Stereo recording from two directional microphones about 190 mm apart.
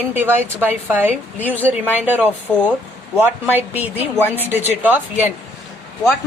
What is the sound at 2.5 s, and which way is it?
Speech, 5° left (ahead or behind).